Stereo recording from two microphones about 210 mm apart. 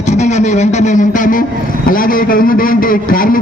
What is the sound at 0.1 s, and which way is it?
Guitar, 35° left (ahead or behind).